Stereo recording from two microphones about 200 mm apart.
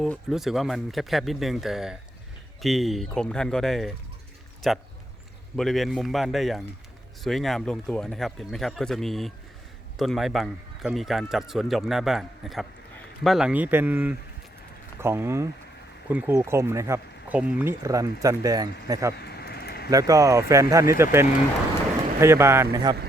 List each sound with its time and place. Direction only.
0.0 s speech: centre (ahead or behind); by 19.1 s 15° right (ahead or behind)
19.1 s a sound: 55° left (ahead or behind)
19.9 s speech: 15° right (ahead or behind)